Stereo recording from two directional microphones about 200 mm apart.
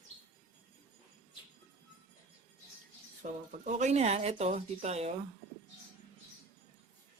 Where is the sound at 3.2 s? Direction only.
40° right (ahead or behind).